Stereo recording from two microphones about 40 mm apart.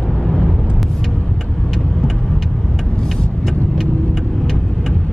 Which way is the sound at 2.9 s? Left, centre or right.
Centre.